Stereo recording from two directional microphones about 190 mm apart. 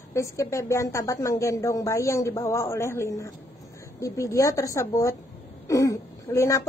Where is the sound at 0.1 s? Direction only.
15° left (ahead or behind).